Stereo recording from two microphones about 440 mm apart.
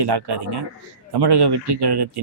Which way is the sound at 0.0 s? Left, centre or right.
Right.